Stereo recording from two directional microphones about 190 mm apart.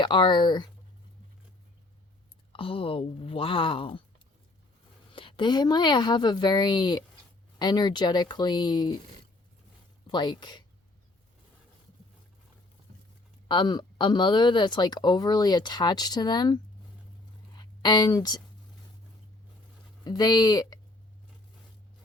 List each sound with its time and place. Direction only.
0.0 s speech: 25° left (ahead or behind)
2.5 s speech: 30° left (ahead or behind)
5.1 s speech: 25° left (ahead or behind)
10.1 s speech: 25° left (ahead or behind)
13.5 s speech: 25° left (ahead or behind)
17.5 s a sound: 20° left (ahead or behind)
20.1 s speech: 20° left (ahead or behind)